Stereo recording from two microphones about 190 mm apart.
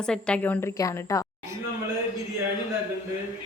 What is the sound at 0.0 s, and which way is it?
A woman's voice, 5° left (ahead or behind).